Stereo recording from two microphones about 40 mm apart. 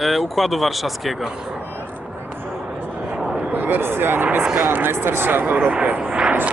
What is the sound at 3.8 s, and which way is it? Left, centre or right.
Speech, right.